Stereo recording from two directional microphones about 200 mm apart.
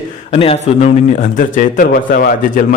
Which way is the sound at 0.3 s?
30° left (ahead or behind).